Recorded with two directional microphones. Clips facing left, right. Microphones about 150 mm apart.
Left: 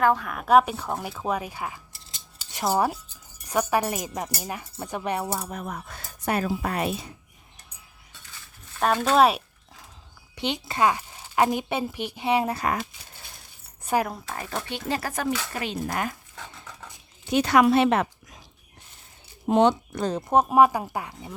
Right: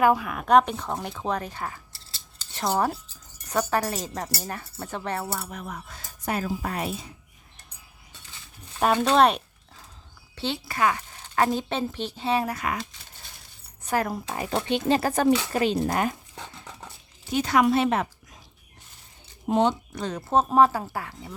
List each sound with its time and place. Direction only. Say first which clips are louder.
0.0 s speech: right 1 dB; 10° right (ahead or behind); by 5.5 s 15° left (ahead or behind)
5.5 s speech: left 3 dB; 45° left (ahead or behind); by 7.1 s 70° left (ahead or behind)
8.8 s speech: even; centre (ahead or behind)
10.3 s a woman's voice: left 2 dB; 15° left (ahead or behind)
12.5 s speech: left 3 dB; 40° left (ahead or behind)
13.8 s speech: left 1 dB; 10° left (ahead or behind)
14.3 s speech: right 6 dB; 15° right (ahead or behind)
17.3 s speech: left 2 dB; 75° left (ahead or behind)
19.5 s speech: left 3 dB; 65° left (ahead or behind)
20.2 s speech: left 1 dB; 15° left (ahead or behind)